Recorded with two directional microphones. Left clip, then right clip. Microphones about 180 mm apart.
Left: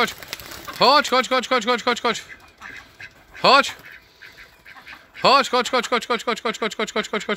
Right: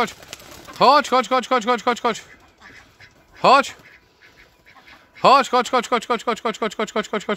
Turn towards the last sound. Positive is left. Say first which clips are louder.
# right 1 dB
turn(degrees=-35)  # may be behind; listen again after turning